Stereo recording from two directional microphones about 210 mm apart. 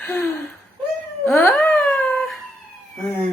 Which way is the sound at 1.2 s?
10° left (ahead or behind).